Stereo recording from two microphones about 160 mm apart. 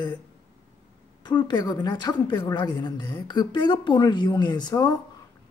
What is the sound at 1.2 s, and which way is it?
Speech, 30° left (ahead or behind).